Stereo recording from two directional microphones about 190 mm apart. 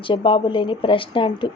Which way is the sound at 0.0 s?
25° left (ahead or behind).